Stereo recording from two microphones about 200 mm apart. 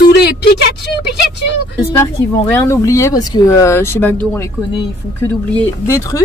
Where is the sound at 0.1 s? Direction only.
55° left (ahead or behind).